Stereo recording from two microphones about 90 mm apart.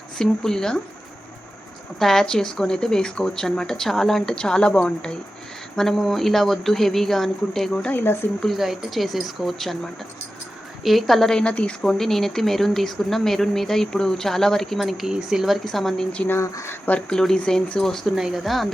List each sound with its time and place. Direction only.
0.2 s speech: 5° left (ahead or behind)
2.0 s speech: 5° left (ahead or behind)
7.9 s speech: 20° left (ahead or behind)
8.4 s speech: centre (ahead or behind)
16.4 s speech: 35° left (ahead or behind)
16.8 s speech: 15° left (ahead or behind)
18.1 s speech: 5° right (ahead or behind)